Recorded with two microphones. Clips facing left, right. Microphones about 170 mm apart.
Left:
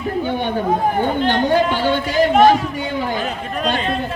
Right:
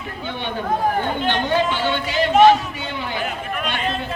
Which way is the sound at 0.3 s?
45° left (ahead or behind).